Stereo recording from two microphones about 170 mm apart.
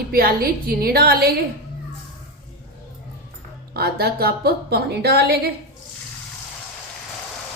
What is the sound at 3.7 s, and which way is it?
A woman's voice, 65° right (ahead or behind).